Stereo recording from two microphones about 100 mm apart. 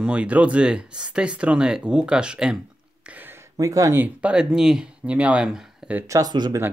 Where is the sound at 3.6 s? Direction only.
35° right (ahead or behind).